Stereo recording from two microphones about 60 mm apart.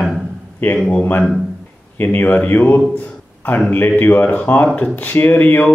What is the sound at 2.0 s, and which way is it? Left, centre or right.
Speech, left.